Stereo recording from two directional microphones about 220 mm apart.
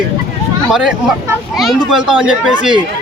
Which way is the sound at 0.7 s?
Centre (ahead or behind).